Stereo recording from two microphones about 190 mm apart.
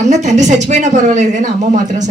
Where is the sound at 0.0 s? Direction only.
35° right (ahead or behind).